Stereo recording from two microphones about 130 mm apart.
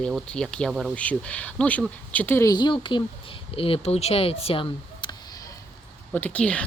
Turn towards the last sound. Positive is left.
turn(degrees=10)  # may be behind; listen again after turning